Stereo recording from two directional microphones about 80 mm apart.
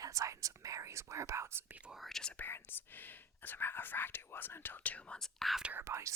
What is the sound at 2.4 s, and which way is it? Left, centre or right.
Speech, left.